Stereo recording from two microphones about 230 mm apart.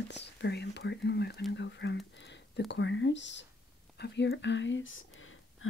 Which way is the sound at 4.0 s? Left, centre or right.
Left.